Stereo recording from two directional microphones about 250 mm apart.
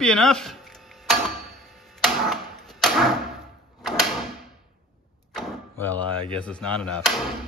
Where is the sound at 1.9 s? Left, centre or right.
Centre.